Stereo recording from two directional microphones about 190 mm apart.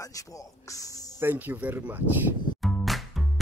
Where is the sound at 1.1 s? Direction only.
10° right (ahead or behind).